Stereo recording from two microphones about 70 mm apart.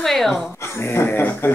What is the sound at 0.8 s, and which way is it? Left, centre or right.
Speech, left.